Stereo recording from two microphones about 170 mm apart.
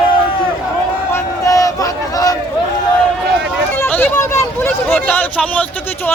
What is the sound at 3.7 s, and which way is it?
Speech, 10° left (ahead or behind).